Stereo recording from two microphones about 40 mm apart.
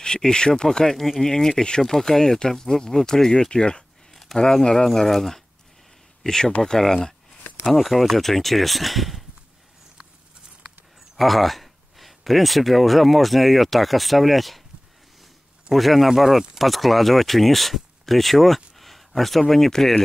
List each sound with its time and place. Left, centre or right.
0.0 s speech: centre
4.1 s a sound: centre
4.9 s speech: centre
7.6 s speech: centre
11.1 s speech: centre
15.7 s speech: centre